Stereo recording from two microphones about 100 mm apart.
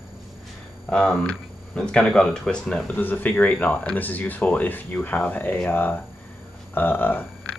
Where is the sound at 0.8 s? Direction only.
5° left (ahead or behind).